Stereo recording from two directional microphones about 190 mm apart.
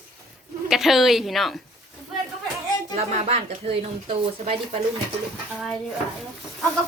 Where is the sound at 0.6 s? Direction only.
Centre (ahead or behind).